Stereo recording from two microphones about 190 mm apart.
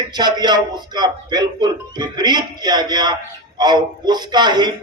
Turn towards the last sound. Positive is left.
turn(degrees=-20)  # may be behind; listen again after turning